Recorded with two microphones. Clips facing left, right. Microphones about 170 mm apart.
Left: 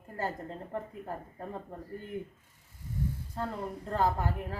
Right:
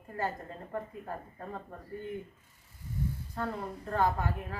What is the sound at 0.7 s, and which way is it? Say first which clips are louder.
Speech: right 2 dB; 25° left (ahead or behind).